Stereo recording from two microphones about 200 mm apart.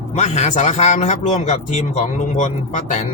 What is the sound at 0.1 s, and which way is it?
Speech, 35° left (ahead or behind).